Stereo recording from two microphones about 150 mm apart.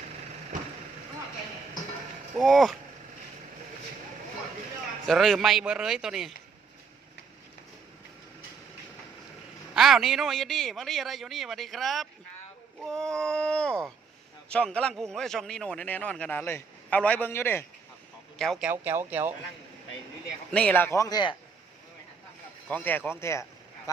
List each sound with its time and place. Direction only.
2.4 s a man's voice: centre (ahead or behind)
5.0 s a man's voice: centre (ahead or behind)
9.7 s a man's voice: 5° right (ahead or behind); by 17.7 s 15° left (ahead or behind)
18.3 s speech: 5° left (ahead or behind)
18.6 s speech: 15° right (ahead or behind)
20.5 s a man's voice: 10° left (ahead or behind); by 21.3 s 30° left (ahead or behind)
22.7 s speech: 10° left (ahead or behind)